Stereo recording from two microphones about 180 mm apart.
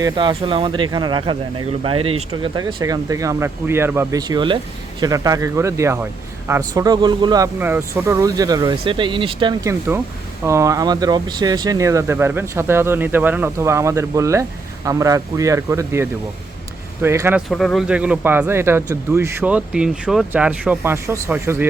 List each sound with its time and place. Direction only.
0.0 s speech: 25° right (ahead or behind)
10.4 s speech: 15° right (ahead or behind)
17.5 s speech: 5° left (ahead or behind); by 21.7 s 15° right (ahead or behind)